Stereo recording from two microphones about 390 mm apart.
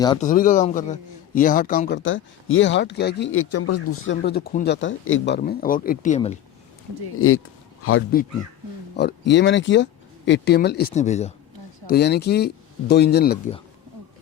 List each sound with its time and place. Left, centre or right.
0.0 s a man's voice: centre
7.2 s a man's voice: left